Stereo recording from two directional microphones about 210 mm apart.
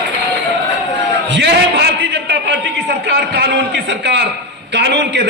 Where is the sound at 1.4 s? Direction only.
50° right (ahead or behind).